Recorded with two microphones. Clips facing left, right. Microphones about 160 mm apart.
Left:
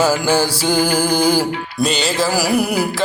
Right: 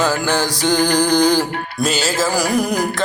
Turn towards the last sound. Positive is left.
turn(degrees=10)  # may be behind; listen again after turning